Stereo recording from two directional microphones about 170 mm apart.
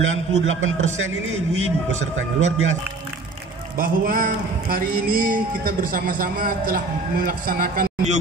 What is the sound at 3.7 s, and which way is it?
A man's voice, 55° right (ahead or behind).